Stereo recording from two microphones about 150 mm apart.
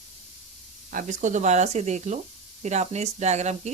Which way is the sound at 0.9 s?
55° right (ahead or behind).